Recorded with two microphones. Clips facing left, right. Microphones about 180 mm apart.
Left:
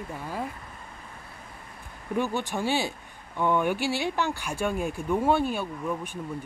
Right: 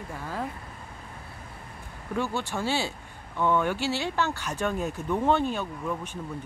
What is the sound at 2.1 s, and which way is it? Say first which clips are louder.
Speech: left 2 dB; 15° left (ahead or behind).